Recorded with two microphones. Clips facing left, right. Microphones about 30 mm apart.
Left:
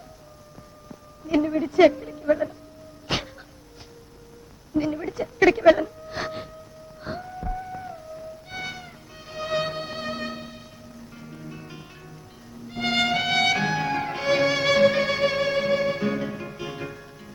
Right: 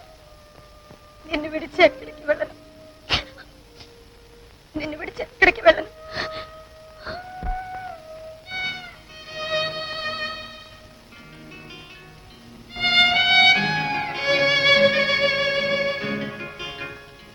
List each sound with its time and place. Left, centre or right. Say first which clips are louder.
1.3 s a woman's voice: left 4 dB; right
3.1 s dog: right 3 dB; right
4.8 s a sound: left 3 dB; right
7.3 s music: right 2 dB; right
11.2 s music: left 1 dB; right